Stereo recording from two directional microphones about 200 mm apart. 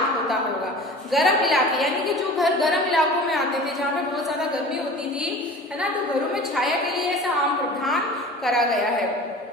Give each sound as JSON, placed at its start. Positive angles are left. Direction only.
{"t": 1.1, "sound": "a woman's voice", "side_deg": 0}
{"t": 8.4, "sound": "a woman's voice", "side_deg": 0}